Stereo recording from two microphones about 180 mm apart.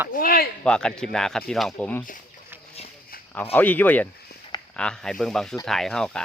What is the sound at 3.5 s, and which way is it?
Speech, 10° left (ahead or behind).